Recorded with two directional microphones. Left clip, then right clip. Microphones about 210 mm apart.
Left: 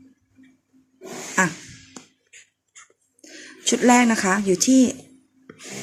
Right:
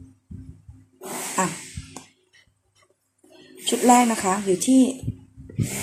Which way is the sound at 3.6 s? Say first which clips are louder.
Even; 30° left (ahead or behind).